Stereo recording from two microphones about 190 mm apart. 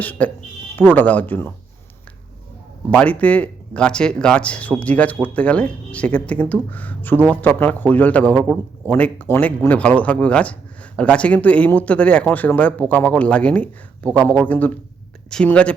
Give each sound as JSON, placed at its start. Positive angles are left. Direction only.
{"t": 0.0, "sound": "speech", "side_deg": 10}
{"t": 2.9, "sound": "speech", "side_deg": 5}